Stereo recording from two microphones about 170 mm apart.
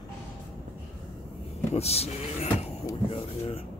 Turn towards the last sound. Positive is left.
turn(degrees=35)  # may be behind; listen again after turning